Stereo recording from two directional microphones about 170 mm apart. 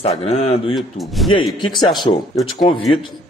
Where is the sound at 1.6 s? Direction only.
25° left (ahead or behind).